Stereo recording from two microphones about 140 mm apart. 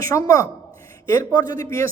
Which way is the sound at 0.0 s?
20° left (ahead or behind).